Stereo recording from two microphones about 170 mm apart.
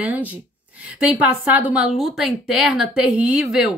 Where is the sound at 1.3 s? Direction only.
10° right (ahead or behind).